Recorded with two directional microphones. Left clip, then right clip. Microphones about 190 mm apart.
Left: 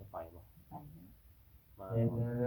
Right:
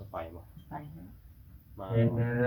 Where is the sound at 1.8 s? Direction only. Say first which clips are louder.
Right 6 dB; 25° right (ahead or behind).